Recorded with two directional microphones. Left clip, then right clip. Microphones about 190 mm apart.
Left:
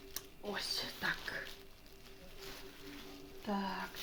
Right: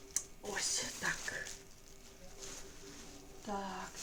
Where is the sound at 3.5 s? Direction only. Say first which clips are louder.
Left 1 dB; 30° left (ahead or behind).